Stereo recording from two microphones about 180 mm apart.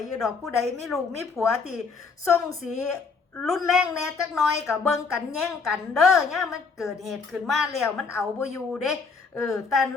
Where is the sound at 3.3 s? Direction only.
Centre (ahead or behind).